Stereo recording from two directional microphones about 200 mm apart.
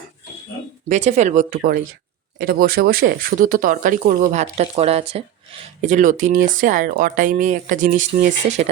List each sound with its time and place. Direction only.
0.9 s speech: 35° right (ahead or behind)